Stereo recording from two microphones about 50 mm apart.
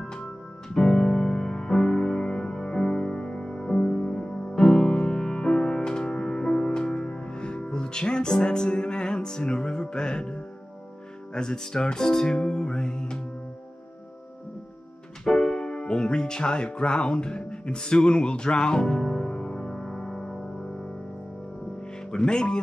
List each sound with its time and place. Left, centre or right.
0.0 s music: centre
15.2 s music: centre
22.1 s speech: centre